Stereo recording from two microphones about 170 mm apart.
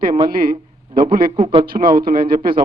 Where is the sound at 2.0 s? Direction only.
60° right (ahead or behind).